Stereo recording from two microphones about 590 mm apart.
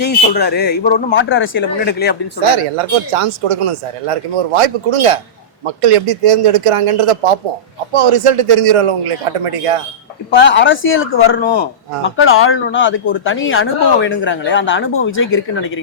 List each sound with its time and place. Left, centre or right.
0.0 s speech: centre
2.4 s speech: right
10.3 s speech: centre